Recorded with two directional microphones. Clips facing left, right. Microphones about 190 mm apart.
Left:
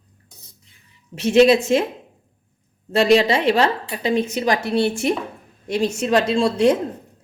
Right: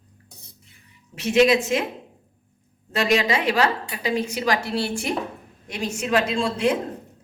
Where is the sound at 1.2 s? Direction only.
30° left (ahead or behind).